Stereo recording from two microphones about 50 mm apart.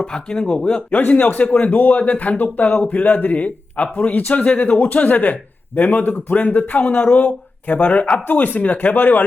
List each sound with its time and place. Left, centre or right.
0.0 s speech: centre
0.9 s speech: left